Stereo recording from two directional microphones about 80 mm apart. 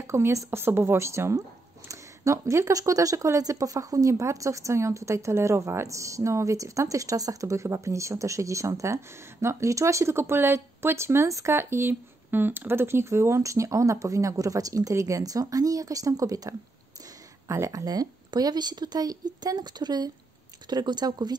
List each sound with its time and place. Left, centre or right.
0.0 s a woman's voice: right